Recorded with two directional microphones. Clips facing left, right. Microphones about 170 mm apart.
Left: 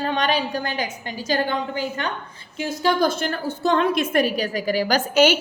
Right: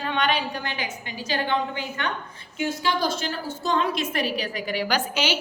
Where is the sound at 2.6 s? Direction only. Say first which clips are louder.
Left 4 dB; 40° left (ahead or behind).